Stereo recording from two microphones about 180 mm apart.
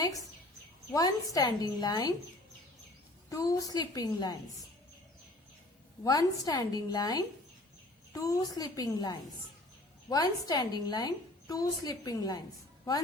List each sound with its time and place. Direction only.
0.9 s a woman's voice: 20° left (ahead or behind)
3.2 s a woman's voice: 20° left (ahead or behind)
6.0 s a woman's voice: 20° left (ahead or behind)